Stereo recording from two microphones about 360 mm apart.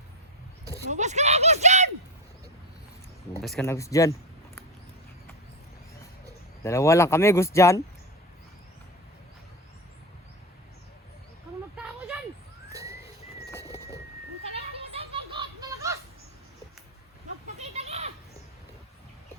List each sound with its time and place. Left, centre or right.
0.6 s speech: centre
3.4 s speech: centre
6.6 s speech: centre
11.8 s a sound: centre
13.5 s pigeon: centre
14.5 s children playing: centre
17.6 s a sound: centre